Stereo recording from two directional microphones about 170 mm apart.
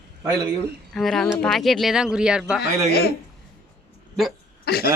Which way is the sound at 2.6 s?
70° left (ahead or behind).